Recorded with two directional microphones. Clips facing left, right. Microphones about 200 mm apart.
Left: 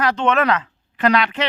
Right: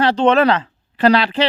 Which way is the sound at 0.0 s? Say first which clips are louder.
Right 5 dB; 30° right (ahead or behind).